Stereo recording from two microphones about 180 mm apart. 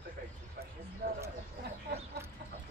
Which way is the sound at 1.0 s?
55° right (ahead or behind).